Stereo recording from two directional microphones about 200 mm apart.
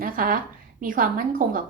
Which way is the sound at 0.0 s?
45° right (ahead or behind).